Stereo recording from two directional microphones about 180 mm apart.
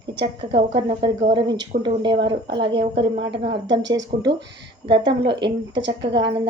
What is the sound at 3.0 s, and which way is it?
Speech, 75° right (ahead or behind).